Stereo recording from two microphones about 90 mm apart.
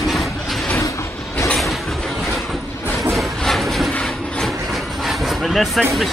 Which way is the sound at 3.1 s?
Centre (ahead or behind).